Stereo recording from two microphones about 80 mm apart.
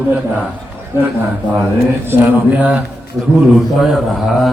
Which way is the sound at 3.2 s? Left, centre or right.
Centre.